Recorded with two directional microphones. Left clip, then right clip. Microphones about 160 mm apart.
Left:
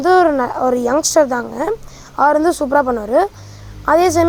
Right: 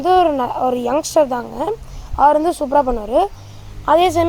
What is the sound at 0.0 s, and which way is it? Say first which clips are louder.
Speech: left 2 dB; 25° left (ahead or behind).